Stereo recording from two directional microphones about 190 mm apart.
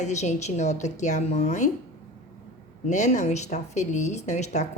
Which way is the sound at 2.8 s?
40° left (ahead or behind).